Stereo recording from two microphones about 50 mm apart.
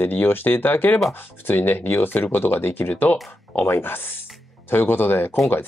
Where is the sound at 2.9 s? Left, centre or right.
Left.